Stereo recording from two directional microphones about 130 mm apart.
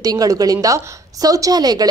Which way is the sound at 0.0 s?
30° right (ahead or behind).